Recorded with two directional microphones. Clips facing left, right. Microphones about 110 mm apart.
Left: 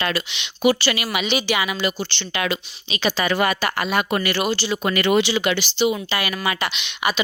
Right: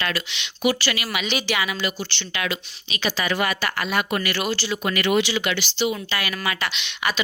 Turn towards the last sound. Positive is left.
turn(degrees=10)  # may be behind; listen again after turning